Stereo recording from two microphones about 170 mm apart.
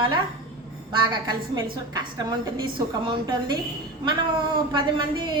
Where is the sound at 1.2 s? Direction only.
25° right (ahead or behind).